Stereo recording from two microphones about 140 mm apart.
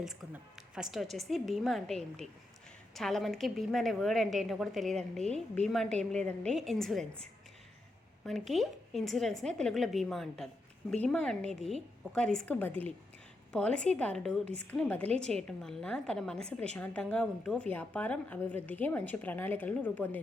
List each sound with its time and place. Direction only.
0.0 s a woman's voice: centre (ahead or behind)
14.4 s a woman's voice: 50° right (ahead or behind)
14.7 s a woman's voice: 10° left (ahead or behind)